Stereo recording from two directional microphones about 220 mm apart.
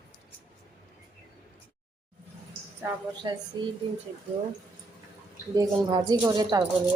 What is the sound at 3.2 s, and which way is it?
Speech, 20° right (ahead or behind).